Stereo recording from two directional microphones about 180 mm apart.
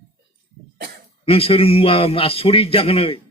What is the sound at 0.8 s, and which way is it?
Cough, 60° right (ahead or behind).